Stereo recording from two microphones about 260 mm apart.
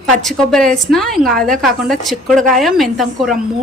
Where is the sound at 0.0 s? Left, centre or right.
Centre.